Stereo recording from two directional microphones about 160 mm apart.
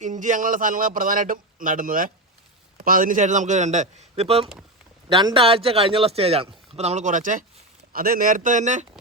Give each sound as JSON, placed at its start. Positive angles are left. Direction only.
{"t": 0.0, "sound": "a man's voice", "side_deg": -55}